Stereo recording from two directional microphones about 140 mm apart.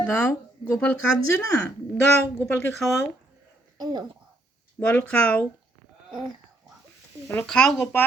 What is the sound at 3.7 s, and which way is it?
Speech, 30° right (ahead or behind).